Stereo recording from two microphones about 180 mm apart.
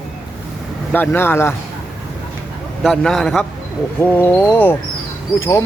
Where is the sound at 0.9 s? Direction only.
10° left (ahead or behind).